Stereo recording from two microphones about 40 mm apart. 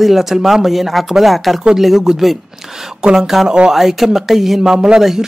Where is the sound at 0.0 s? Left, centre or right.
Centre.